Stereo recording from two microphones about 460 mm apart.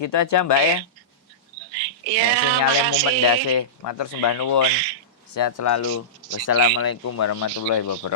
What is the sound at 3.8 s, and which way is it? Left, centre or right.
Speech, left.